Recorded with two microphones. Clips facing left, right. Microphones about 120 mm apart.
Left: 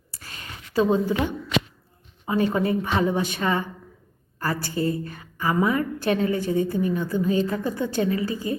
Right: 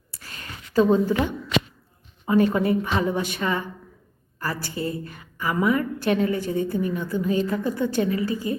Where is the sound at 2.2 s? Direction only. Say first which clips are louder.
Right 3 dB; 25° left (ahead or behind).